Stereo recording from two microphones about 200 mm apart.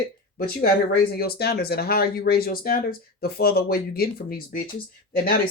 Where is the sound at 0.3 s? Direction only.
50° left (ahead or behind).